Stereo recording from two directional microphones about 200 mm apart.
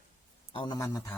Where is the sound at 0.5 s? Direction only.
25° left (ahead or behind).